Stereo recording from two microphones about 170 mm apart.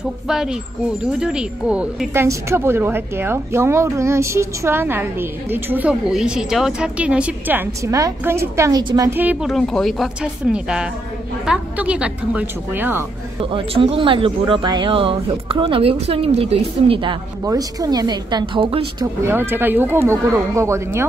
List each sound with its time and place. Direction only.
0.3 s a woman's voice: 5° right (ahead or behind)
13.4 s speech: 30° right (ahead or behind)
19.2 s a woman's voice: 15° right (ahead or behind)